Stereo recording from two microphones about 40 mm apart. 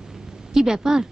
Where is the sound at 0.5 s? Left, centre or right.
Centre.